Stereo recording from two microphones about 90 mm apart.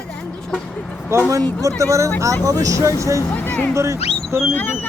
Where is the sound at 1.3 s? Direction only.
40° right (ahead or behind).